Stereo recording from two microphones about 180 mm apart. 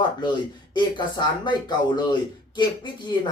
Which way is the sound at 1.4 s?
25° left (ahead or behind).